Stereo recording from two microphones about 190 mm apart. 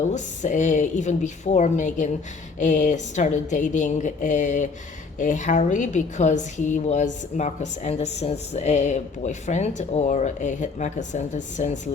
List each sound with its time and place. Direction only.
0.0 s a woman's voice: 40° left (ahead or behind)